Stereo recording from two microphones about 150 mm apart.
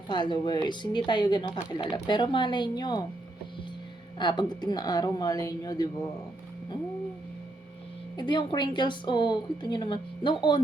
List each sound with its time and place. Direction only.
0.1 s a woman's voice: 30° left (ahead or behind)
4.2 s speech: 30° left (ahead or behind)
8.1 s a woman's voice: 30° left (ahead or behind)